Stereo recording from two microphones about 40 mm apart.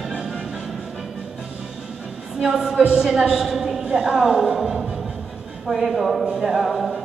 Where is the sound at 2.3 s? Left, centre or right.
Centre.